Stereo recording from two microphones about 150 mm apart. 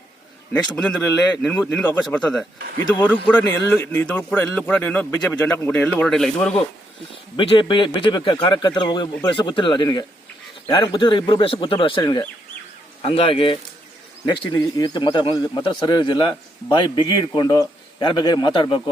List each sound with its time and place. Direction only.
0.5 s a man's voice: 10° left (ahead or behind)
7.1 s speech: 35° left (ahead or behind)